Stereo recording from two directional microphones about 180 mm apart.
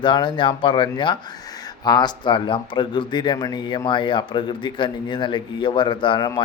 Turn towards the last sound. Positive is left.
turn(degrees=25)  # may be behind; listen again after turning